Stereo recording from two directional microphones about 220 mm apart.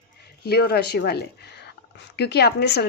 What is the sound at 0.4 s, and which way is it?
Speech, 45° left (ahead or behind).